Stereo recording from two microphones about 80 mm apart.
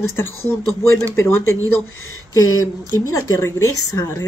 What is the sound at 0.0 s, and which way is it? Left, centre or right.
A woman's voice, left.